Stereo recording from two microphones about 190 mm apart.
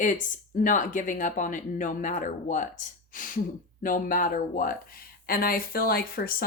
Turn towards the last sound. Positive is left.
turn(degrees=50)  # may be behind; listen again after turning